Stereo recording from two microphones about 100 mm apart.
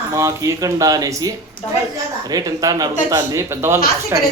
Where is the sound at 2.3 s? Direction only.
40° right (ahead or behind).